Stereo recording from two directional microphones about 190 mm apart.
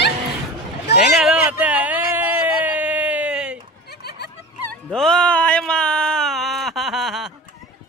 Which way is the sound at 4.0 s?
60° left (ahead or behind).